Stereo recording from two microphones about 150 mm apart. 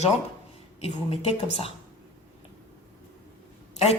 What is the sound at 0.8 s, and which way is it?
Speech, 40° left (ahead or behind).